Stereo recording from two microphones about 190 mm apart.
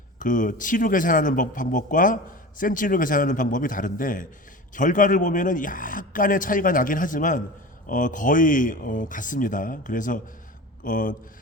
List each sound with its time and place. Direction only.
0.2 s speech: 45° left (ahead or behind)